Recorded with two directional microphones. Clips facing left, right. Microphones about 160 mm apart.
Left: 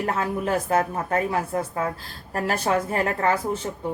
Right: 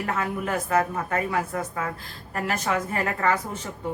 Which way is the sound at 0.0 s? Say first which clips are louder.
Left 3 dB; 30° left (ahead or behind).